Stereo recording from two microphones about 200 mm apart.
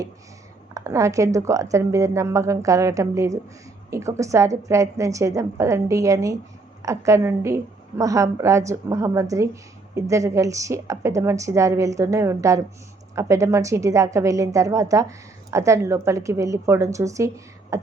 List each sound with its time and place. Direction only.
0.7 s a woman's voice: 15° right (ahead or behind)